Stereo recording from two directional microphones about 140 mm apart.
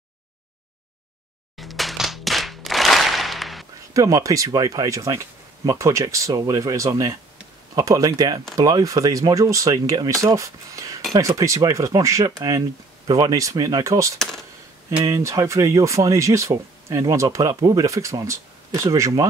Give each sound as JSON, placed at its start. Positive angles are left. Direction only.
{"t": 1.6, "sound": "clapping", "side_deg": 0}
{"t": 3.9, "sound": "speech", "side_deg": -25}
{"t": 14.1, "sound": "speech", "side_deg": 5}
{"t": 15.0, "sound": "speech", "side_deg": -20}